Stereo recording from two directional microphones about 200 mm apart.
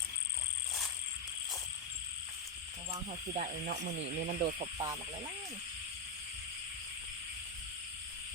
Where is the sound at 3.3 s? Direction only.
35° right (ahead or behind).